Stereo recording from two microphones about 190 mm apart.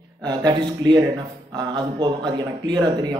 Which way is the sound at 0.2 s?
20° right (ahead or behind).